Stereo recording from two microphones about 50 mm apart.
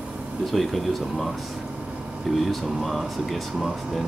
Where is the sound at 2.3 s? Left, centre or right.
Centre.